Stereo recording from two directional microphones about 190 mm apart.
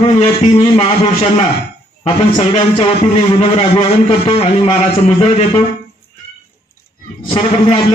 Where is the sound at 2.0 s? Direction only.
25° left (ahead or behind).